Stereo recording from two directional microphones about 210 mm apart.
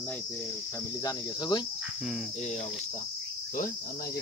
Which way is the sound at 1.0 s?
20° left (ahead or behind).